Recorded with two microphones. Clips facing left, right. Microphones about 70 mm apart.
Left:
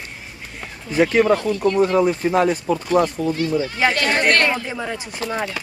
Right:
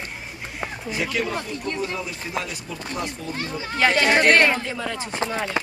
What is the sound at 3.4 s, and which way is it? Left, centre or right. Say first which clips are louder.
Speech: left 8 dB; right.